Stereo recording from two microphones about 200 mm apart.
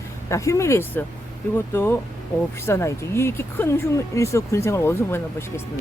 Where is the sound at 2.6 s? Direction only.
15° left (ahead or behind).